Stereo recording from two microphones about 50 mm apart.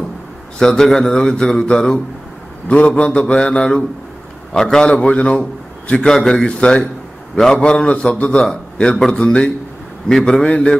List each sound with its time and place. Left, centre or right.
0.6 s a man's voice: centre
2.9 s mantra: centre
4.6 s a man's voice: centre
5.0 s a man's voice: left
6.1 s a man's voice: centre
6.4 s mantra: left
8.3 s a man's voice: centre
10.0 s mantra: centre